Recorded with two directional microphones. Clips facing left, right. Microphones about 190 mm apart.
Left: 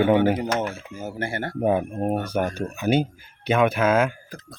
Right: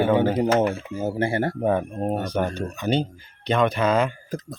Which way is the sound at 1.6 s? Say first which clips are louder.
Left 6 dB; 10° left (ahead or behind).